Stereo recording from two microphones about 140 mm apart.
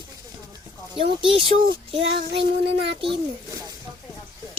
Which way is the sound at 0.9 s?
40° right (ahead or behind).